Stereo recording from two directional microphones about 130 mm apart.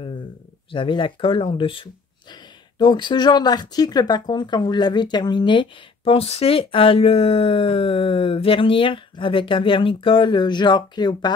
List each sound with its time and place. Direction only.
0.7 s speech: 40° left (ahead or behind)